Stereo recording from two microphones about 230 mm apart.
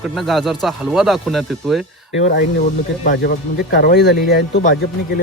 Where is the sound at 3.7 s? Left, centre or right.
Left.